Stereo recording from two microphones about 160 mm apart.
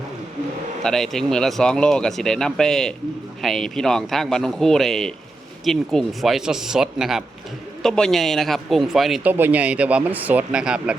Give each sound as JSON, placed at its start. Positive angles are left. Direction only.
{"t": 0.8, "sound": "speech", "side_deg": 5}